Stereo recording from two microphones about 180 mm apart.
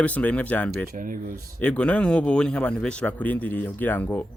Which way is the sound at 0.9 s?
50° right (ahead or behind).